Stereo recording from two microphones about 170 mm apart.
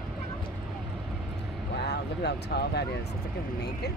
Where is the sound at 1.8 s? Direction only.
75° left (ahead or behind).